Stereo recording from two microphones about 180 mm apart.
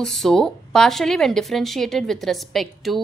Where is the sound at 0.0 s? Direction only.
Centre (ahead or behind).